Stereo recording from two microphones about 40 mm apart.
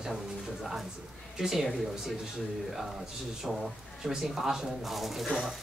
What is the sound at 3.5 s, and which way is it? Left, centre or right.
A man's voice, centre.